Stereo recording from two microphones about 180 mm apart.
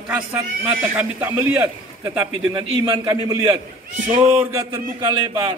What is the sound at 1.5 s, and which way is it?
A man's voice, 10° right (ahead or behind).